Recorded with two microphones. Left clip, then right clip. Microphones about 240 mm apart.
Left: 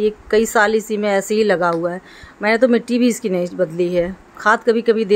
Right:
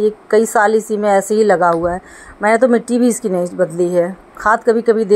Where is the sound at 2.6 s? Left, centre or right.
Centre.